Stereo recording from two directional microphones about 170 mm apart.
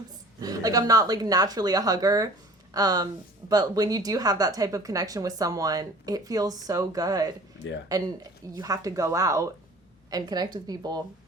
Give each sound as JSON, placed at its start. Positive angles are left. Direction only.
{"t": 0.3, "sound": "a woman's voice", "side_deg": -20}